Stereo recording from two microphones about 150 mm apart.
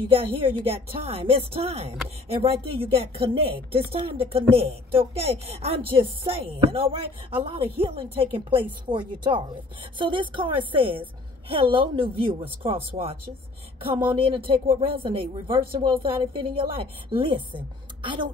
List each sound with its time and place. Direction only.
0.1 s a woman's voice: 40° right (ahead or behind)